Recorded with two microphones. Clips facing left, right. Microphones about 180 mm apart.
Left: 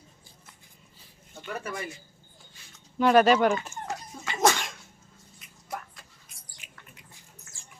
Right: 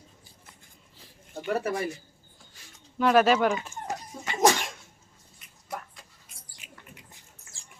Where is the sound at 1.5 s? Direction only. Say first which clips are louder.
Right 7 dB; 40° right (ahead or behind).